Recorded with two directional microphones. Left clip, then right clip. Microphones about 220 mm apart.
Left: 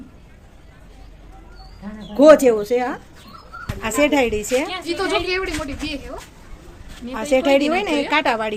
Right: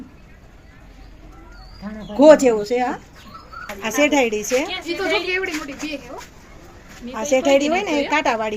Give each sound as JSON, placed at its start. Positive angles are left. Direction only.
{"t": 2.1, "sound": "a woman's voice", "side_deg": 0}
{"t": 4.9, "sound": "a woman's voice", "side_deg": 25}
{"t": 7.1, "sound": "a woman's voice", "side_deg": 5}